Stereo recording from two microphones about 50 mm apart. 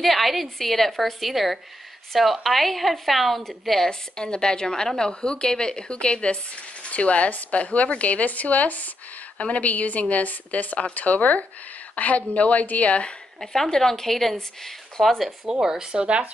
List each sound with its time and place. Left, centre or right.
0.0 s a woman's voice: centre; by 13.1 s left
13.4 s a woman's voice: centre
15.6 s speech: centre